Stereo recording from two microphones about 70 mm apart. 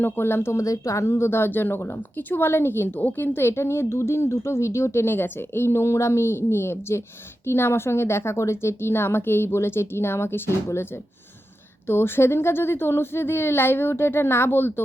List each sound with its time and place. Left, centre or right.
0.0 s speech: left